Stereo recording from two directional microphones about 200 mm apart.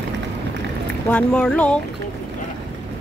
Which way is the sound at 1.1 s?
5° left (ahead or behind).